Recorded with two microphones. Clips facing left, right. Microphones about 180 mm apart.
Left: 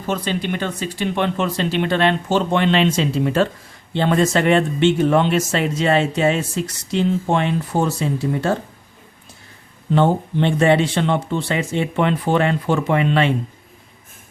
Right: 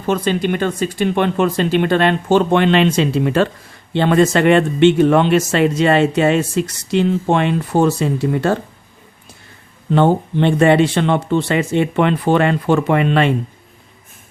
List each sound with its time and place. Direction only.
0.1 s speech: 50° right (ahead or behind); by 8.5 s 65° right (ahead or behind)
9.9 s speech: 60° right (ahead or behind)